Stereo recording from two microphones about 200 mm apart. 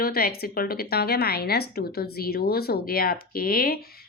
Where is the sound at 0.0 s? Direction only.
50° left (ahead or behind).